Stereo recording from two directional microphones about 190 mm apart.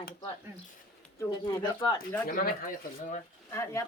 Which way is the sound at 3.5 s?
15° left (ahead or behind).